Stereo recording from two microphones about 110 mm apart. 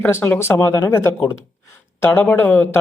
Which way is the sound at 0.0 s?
20° left (ahead or behind).